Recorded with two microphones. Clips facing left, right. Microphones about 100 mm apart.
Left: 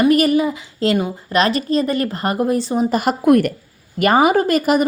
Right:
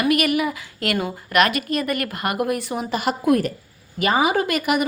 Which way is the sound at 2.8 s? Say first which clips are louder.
Left 4 dB; 45° left (ahead or behind).